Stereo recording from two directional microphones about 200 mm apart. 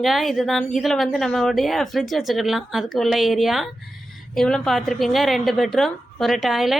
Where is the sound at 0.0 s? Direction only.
Centre (ahead or behind).